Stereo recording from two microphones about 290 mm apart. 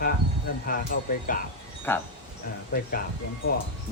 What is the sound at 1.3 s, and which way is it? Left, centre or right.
Speech, left.